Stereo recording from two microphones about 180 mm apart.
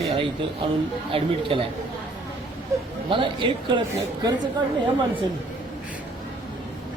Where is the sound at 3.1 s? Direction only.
30° right (ahead or behind).